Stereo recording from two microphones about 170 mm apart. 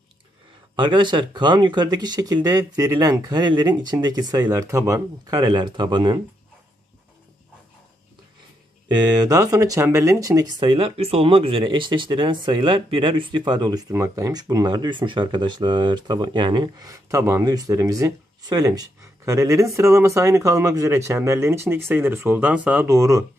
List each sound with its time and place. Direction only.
0.7 s speech: 30° right (ahead or behind)
8.8 s speech: 25° right (ahead or behind)